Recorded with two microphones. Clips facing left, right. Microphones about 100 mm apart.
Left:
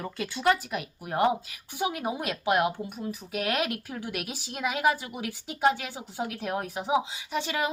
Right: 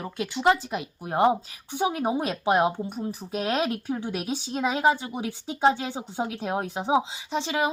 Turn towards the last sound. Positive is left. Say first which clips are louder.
# right 3 dB
turn(degrees=-20)  # may be behind; listen again after turning